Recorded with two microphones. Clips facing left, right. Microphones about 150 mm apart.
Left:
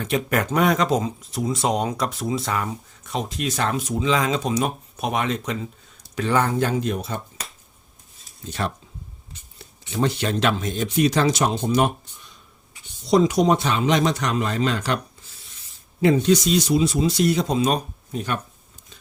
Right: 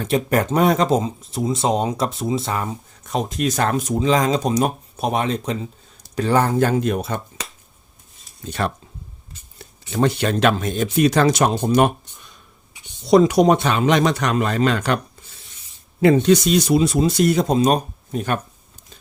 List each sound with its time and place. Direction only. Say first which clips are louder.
0.0 s speech: right 4 dB; 35° right (ahead or behind)
3.1 s speech: right 5 dB; 45° right (ahead or behind); by 7.4 s 65° right (ahead or behind)
8.4 s speech: right 3 dB; 55° right (ahead or behind)
9.9 s speech: right 4 dB; 55° right (ahead or behind)
13.1 s speech: right 4 dB; 65° right (ahead or behind)
16.0 s speech: right 3 dB; 60° right (ahead or behind)